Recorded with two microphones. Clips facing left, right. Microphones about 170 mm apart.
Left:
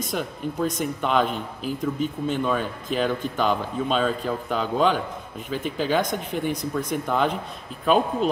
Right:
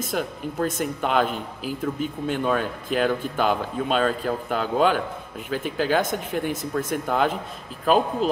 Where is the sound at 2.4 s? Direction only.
5° right (ahead or behind).